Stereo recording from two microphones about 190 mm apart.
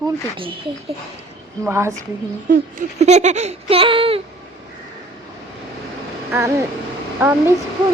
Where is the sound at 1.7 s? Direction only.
15° right (ahead or behind).